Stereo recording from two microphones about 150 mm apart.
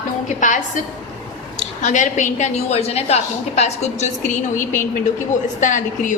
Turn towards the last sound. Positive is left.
turn(degrees=55)  # may be behind; listen again after turning